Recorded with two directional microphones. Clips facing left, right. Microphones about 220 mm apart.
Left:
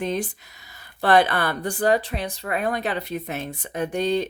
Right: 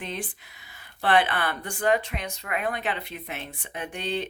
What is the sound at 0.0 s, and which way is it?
Speech, 40° left (ahead or behind).